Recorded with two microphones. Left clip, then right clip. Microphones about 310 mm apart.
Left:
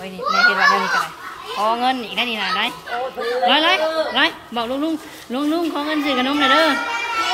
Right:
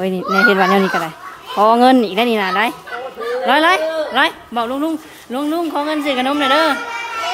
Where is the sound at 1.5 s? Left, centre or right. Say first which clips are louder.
Right 8 dB; right.